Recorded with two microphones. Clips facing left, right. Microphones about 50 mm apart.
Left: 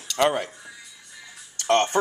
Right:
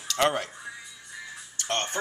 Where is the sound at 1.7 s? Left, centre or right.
Left.